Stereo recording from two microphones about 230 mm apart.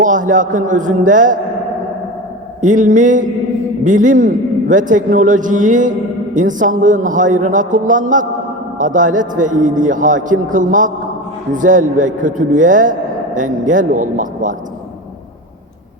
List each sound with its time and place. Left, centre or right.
0.0 s a man's voice: right
2.6 s a man's voice: right